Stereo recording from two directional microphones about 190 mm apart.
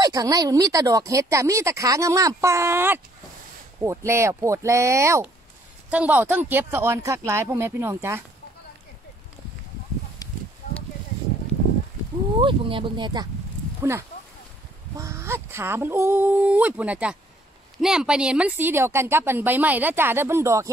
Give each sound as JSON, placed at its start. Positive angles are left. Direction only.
{"t": 0.0, "sound": "a woman's voice", "side_deg": -20}
{"t": 10.2, "sound": "a sound", "side_deg": 20}
{"t": 12.4, "sound": "speech", "side_deg": -25}
{"t": 13.7, "sound": "a woman's voice", "side_deg": -10}